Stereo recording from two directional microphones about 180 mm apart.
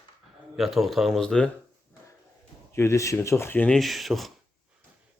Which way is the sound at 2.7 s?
15° left (ahead or behind).